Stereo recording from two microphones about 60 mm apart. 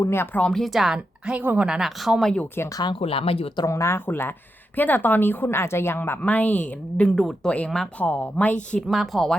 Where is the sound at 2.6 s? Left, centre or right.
Left.